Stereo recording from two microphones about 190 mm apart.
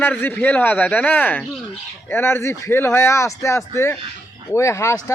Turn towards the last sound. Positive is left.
turn(degrees=15)  # may be behind; listen again after turning